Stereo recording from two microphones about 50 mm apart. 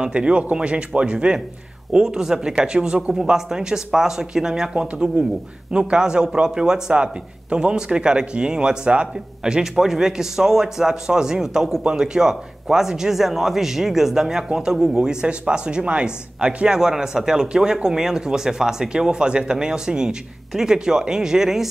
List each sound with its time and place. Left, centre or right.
0.0 s speech: right
15.2 s speech: right